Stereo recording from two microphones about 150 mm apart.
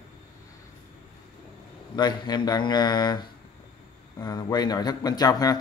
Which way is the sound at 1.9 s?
30° left (ahead or behind).